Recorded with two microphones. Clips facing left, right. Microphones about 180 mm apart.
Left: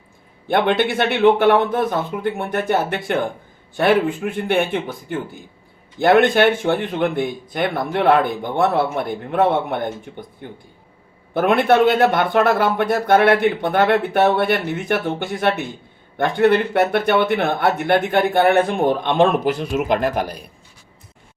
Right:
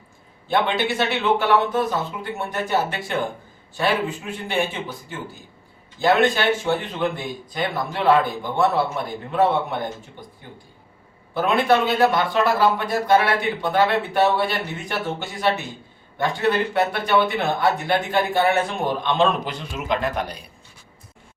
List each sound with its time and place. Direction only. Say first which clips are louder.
0.4 s speech: left 4 dB; 55° left (ahead or behind)
11.3 s speech: left 4 dB; 60° left (ahead or behind)
20.0 s speech: left 4 dB; 5° left (ahead or behind)